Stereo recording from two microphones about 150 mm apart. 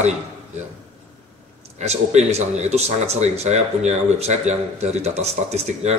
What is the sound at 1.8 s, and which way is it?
Speech, 50° right (ahead or behind).